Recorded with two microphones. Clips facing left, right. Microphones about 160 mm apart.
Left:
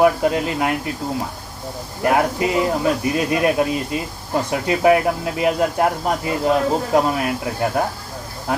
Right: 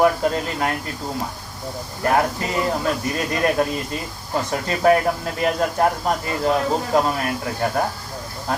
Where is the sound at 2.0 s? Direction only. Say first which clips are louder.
Left 2 dB; 10° left (ahead or behind).